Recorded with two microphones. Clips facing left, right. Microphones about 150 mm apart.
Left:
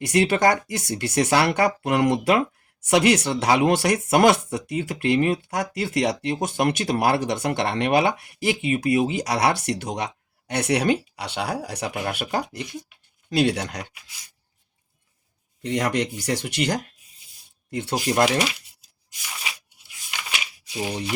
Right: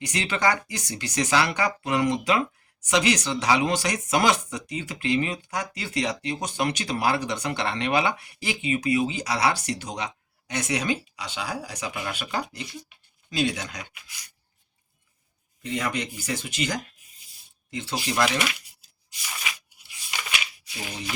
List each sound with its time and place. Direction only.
0.1 s speech: 50° left (ahead or behind)
13.3 s speech: 65° left (ahead or behind)
15.6 s speech: 70° left (ahead or behind); by 18.9 s 45° left (ahead or behind)
20.7 s speech: 30° left (ahead or behind)